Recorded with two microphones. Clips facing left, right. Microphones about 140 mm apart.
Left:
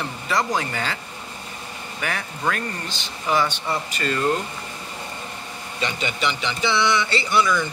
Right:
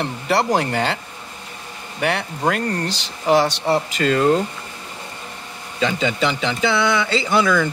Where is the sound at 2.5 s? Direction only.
75° right (ahead or behind).